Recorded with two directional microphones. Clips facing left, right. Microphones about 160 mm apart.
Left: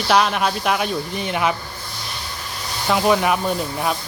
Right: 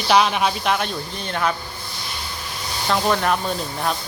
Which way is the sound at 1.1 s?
15° left (ahead or behind).